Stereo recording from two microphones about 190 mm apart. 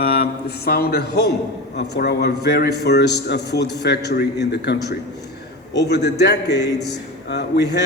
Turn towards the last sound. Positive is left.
turn(degrees=60)  # may be behind; listen again after turning